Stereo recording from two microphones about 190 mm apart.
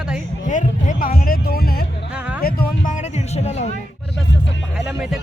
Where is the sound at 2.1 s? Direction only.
5° right (ahead or behind).